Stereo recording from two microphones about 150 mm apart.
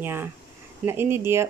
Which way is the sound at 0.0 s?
15° right (ahead or behind).